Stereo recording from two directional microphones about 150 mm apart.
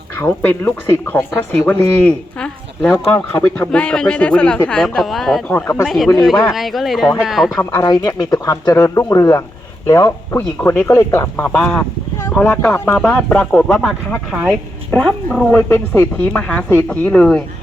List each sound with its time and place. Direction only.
0.2 s speech: 15° left (ahead or behind); by 7.6 s centre (ahead or behind)
7.6 s speech: 15° left (ahead or behind)
7.9 s speech: 30° left (ahead or behind)
11.4 s speech: 5° left (ahead or behind)